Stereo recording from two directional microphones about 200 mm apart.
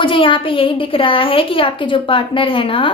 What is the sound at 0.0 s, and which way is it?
A woman's voice, 25° left (ahead or behind).